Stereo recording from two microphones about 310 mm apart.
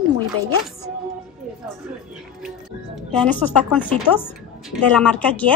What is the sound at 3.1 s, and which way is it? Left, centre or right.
A woman's voice, centre.